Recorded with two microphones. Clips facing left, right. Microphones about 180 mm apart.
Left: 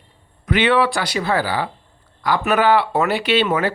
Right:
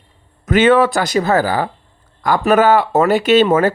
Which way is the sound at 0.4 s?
45° right (ahead or behind).